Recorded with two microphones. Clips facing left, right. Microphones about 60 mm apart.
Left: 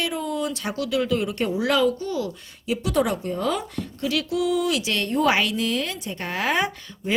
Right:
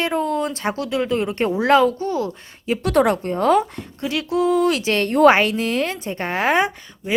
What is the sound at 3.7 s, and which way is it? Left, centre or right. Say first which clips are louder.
Speech: right 1 dB; right.